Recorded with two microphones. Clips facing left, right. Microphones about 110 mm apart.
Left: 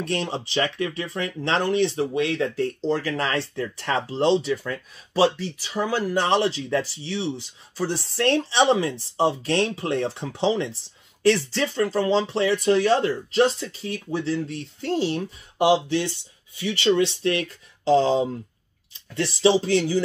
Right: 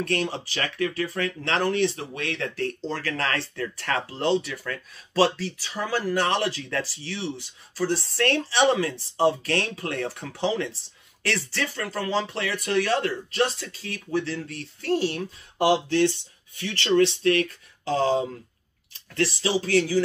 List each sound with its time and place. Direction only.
0.0 s speech: 20° left (ahead or behind)